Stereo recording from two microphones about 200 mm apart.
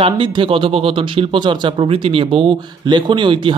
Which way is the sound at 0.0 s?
25° right (ahead or behind).